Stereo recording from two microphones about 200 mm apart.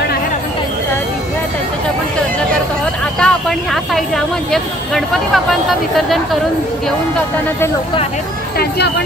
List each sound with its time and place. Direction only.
3.2 s speech: 5° left (ahead or behind)
8.5 s speech: 55° left (ahead or behind)